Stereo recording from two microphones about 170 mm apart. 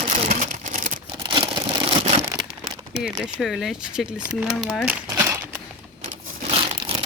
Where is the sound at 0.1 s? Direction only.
50° right (ahead or behind).